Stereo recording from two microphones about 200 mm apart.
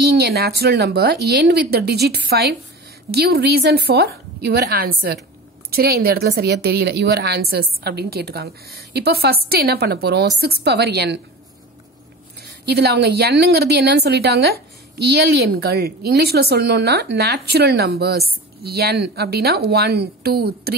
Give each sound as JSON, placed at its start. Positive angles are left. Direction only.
{"t": 0.1, "sound": "a woman's voice", "side_deg": -55}
{"t": 12.6, "sound": "a woman's voice", "side_deg": -55}